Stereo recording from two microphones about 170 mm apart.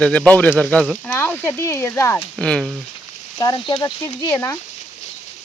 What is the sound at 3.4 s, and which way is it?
Speech, 25° left (ahead or behind).